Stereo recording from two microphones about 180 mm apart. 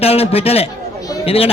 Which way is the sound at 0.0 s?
35° left (ahead or behind).